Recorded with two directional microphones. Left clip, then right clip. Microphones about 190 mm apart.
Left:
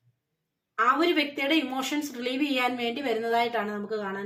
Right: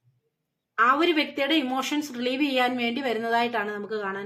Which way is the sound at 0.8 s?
30° right (ahead or behind).